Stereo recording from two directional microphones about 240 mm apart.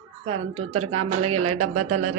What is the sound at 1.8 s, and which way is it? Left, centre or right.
Speech, right.